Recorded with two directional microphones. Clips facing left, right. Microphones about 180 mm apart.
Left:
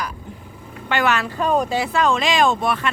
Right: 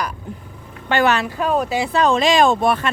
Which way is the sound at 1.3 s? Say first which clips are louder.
Even; 5° right (ahead or behind).